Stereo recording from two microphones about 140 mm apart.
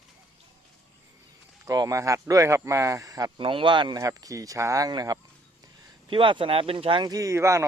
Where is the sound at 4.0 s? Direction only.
25° right (ahead or behind).